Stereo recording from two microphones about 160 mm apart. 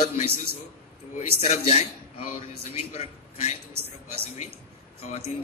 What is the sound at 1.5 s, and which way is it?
A man's voice, 45° left (ahead or behind).